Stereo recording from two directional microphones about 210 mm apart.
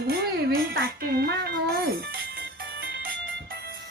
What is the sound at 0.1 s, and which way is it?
Music, 45° right (ahead or behind).